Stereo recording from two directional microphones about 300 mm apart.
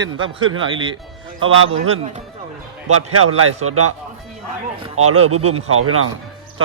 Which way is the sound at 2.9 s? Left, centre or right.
Right.